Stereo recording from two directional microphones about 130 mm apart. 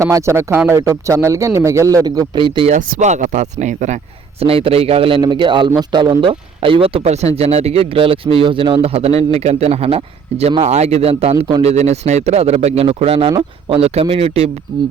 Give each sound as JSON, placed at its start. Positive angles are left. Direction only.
{"t": 0.0, "sound": "speech", "side_deg": -20}
{"t": 2.6, "sound": "speech", "side_deg": -65}
{"t": 4.4, "sound": "a man's voice", "side_deg": -45}